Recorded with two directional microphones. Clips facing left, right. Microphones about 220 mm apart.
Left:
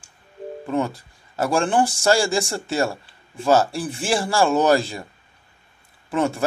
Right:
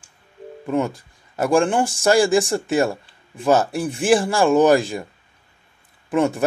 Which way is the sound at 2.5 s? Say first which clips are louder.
Right 4 dB; 15° right (ahead or behind).